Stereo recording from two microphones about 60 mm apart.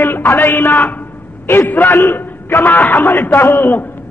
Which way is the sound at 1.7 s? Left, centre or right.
Left.